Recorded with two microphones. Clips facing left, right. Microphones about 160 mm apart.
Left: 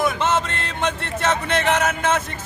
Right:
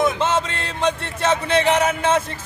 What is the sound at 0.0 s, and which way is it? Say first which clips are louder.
Music: right 1 dB; 25° right (ahead or behind).